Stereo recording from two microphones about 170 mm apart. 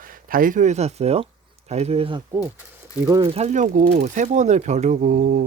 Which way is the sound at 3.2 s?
40° right (ahead or behind).